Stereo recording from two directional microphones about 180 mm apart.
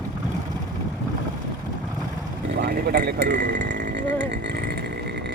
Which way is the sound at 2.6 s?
65° right (ahead or behind).